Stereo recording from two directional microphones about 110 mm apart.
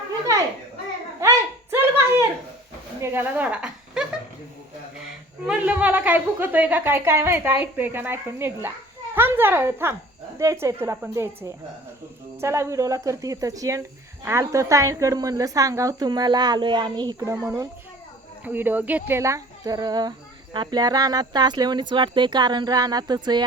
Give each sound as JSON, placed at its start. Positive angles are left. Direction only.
{"t": 0.3, "sound": "children playing", "side_deg": -30}
{"t": 1.2, "sound": "a sound", "side_deg": -25}
{"t": 3.0, "sound": "a sound", "side_deg": -20}
{"t": 5.5, "sound": "a woman's voice", "side_deg": -15}
{"t": 12.4, "sound": "speech", "side_deg": -25}
{"t": 17.2, "sound": "speech", "side_deg": -30}